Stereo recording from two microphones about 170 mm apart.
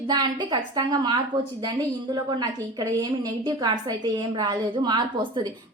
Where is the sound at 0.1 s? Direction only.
25° right (ahead or behind).